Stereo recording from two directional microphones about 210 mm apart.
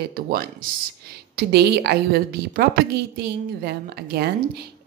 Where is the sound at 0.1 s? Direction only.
45° right (ahead or behind).